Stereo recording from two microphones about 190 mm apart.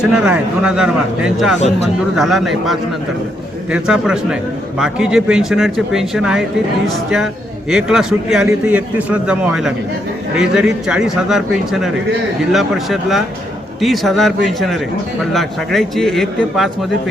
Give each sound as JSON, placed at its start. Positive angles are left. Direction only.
{"t": 0.0, "sound": "speech", "side_deg": -5}